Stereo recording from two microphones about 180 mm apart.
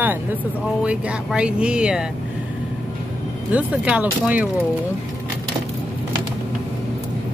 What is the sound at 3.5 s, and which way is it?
Speech, 5° right (ahead or behind).